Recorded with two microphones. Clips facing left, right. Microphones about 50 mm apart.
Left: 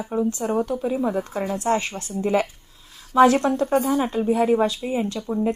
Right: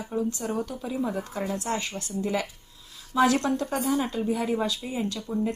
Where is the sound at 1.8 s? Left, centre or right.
Left.